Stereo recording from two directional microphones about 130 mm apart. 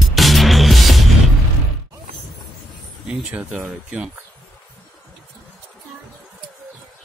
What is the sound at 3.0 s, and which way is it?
Speech, 5° right (ahead or behind).